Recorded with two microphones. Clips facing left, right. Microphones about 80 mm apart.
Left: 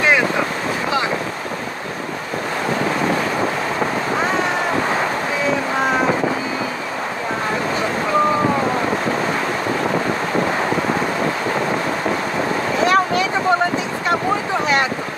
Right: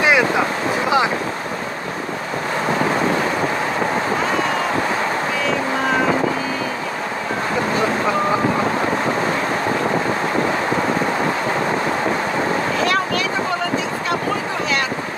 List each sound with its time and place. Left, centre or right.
12.8 s vehicle: left